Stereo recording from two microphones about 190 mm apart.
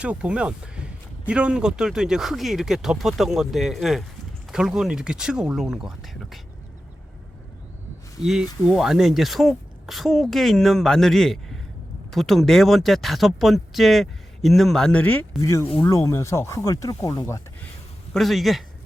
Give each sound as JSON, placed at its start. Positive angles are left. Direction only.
{"t": 0.0, "sound": "speech", "side_deg": -5}
{"t": 8.2, "sound": "speech", "side_deg": 0}
{"t": 18.1, "sound": "speech", "side_deg": 0}